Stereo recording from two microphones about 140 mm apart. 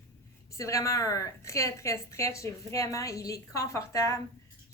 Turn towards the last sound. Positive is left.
turn(degrees=20)  # may be behind; listen again after turning